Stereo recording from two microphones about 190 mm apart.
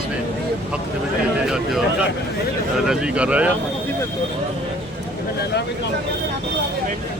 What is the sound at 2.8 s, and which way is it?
Speech, 5° right (ahead or behind).